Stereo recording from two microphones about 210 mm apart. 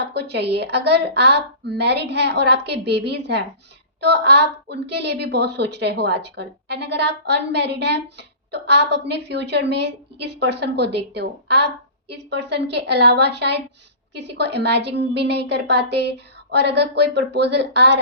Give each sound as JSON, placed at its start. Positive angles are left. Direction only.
{"t": 0.0, "sound": "a woman's voice", "side_deg": -50}